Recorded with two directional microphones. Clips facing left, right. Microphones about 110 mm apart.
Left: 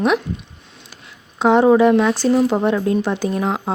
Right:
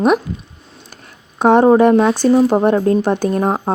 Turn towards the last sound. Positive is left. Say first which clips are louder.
# right 4 dB
turn(degrees=-40)  # may be behind; listen again after turning